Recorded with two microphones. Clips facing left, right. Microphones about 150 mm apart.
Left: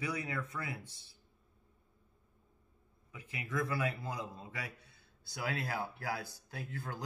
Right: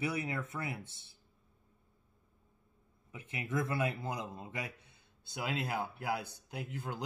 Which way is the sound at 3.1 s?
25° right (ahead or behind).